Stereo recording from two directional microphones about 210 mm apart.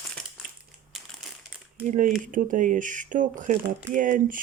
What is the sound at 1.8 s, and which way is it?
Speech, 35° right (ahead or behind).